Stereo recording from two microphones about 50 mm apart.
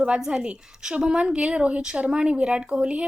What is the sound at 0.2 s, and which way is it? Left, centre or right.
A woman's voice, centre.